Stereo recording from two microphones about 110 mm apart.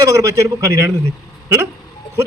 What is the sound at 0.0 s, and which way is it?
Speech, 30° right (ahead or behind).